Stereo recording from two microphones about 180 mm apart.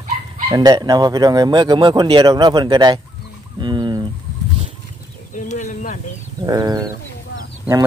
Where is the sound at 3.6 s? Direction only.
25° right (ahead or behind).